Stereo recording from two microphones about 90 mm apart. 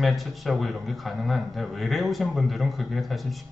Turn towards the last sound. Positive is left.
turn(degrees=0)  # may be behind; listen again after turning